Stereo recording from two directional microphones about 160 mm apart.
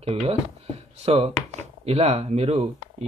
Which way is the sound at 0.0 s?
40° right (ahead or behind).